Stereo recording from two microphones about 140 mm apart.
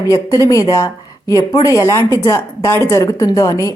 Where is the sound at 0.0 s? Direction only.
25° left (ahead or behind).